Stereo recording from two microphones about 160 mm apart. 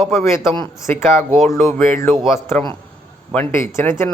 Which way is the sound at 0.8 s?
15° left (ahead or behind).